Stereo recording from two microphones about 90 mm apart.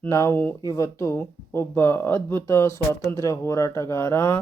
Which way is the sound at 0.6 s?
40° left (ahead or behind).